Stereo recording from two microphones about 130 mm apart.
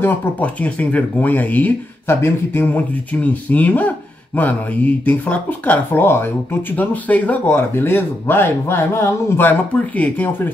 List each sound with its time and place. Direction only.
0.0 s speech: 15° left (ahead or behind)